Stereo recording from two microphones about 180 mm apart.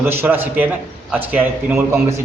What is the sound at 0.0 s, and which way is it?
A man's voice, 10° right (ahead or behind).